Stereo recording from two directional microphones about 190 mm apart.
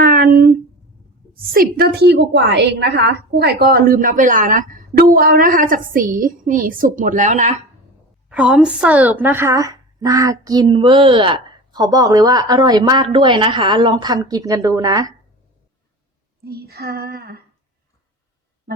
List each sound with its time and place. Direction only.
0.0 s a sound: 50° right (ahead or behind)
1.3 s a woman's voice: 55° right (ahead or behind)
8.3 s a woman's voice: 5° right (ahead or behind)
16.4 s speech: 55° right (ahead or behind)